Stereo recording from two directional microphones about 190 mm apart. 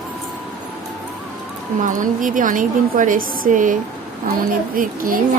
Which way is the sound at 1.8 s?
45° right (ahead or behind).